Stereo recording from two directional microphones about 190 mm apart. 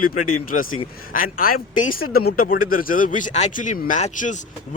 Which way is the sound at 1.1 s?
50° left (ahead or behind).